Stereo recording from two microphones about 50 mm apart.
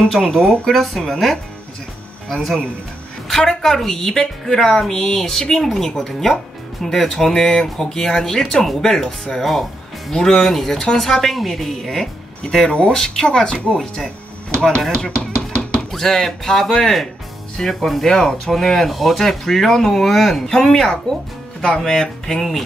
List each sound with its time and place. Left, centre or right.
0.2 s speech: centre
15.0 s chopping: centre
15.9 s speech: centre